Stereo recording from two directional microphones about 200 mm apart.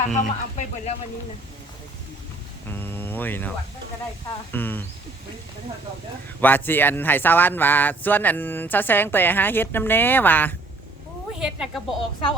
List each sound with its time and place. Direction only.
0.2 s speech: 40° left (ahead or behind)
2.6 s speech: 10° left (ahead or behind)
4.5 s speech: 10° left (ahead or behind)
6.4 s speech: 10° left (ahead or behind)
11.3 s a woman's voice: 5° right (ahead or behind)